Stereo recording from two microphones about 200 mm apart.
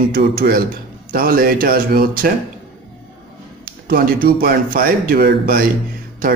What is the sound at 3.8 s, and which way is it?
A man's voice, 45° right (ahead or behind).